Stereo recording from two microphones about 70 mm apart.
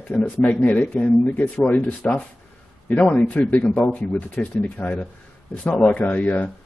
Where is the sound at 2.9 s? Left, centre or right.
Centre.